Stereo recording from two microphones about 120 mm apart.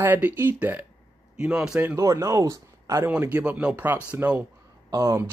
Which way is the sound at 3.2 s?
15° right (ahead or behind).